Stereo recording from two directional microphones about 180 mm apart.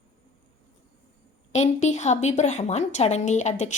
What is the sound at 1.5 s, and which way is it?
A woman's voice, 40° left (ahead or behind).